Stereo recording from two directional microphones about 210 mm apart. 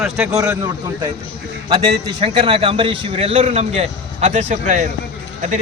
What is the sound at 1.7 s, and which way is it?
A man's voice, 20° right (ahead or behind).